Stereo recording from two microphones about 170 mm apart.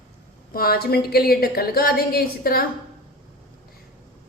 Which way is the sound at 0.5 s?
60° left (ahead or behind).